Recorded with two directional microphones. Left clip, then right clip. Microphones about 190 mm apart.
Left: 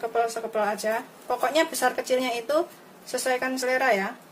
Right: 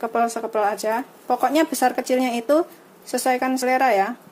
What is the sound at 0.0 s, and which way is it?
Speech, 40° right (ahead or behind).